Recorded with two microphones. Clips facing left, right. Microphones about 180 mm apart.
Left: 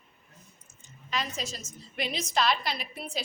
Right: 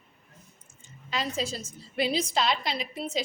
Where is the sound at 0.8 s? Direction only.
30° right (ahead or behind).